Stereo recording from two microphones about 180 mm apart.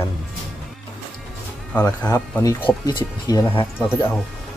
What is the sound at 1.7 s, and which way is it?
A man's voice, 10° left (ahead or behind).